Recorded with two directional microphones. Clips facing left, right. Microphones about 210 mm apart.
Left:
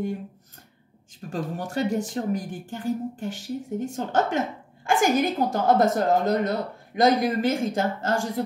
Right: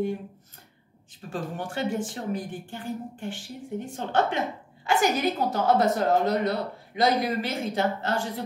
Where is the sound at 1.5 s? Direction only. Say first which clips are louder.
Left 3 dB; 40° left (ahead or behind).